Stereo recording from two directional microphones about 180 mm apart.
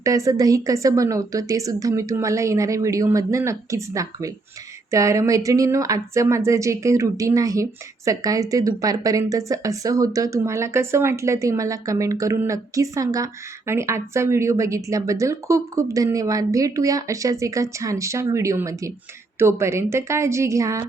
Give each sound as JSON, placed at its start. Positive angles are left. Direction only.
{"t": 0.0, "sound": "speech", "side_deg": -20}